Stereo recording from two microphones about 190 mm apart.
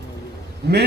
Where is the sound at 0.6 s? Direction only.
60° right (ahead or behind).